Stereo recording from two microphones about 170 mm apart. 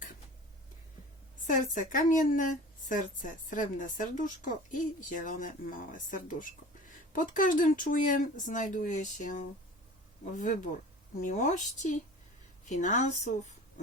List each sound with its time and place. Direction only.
1.5 s speech: 50° left (ahead or behind)